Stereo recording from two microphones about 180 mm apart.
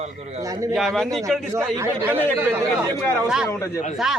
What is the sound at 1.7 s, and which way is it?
Speech, 15° right (ahead or behind).